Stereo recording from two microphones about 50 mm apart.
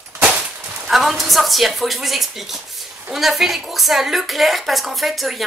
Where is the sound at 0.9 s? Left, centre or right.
Centre.